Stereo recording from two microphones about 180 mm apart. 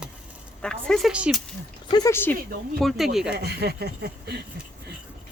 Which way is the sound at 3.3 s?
65° right (ahead or behind).